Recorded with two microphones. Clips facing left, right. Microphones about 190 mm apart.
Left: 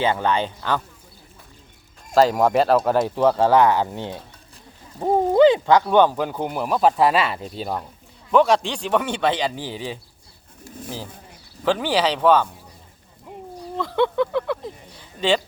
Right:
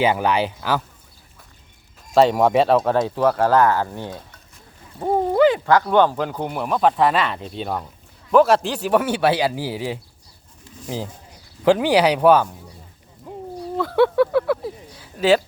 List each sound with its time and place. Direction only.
0.0 s a man's voice: 10° right (ahead or behind)
2.1 s speech: centre (ahead or behind)
3.2 s speech: 20° left (ahead or behind)
4.9 s owl: 10° left (ahead or behind)
5.3 s a man's voice: 20° left (ahead or behind); by 12.5 s 10° right (ahead or behind)
13.6 s a sound: 5° right (ahead or behind)